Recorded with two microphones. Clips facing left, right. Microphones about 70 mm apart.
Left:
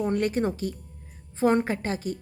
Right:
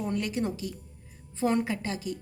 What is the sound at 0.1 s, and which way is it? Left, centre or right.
A woman's voice, left.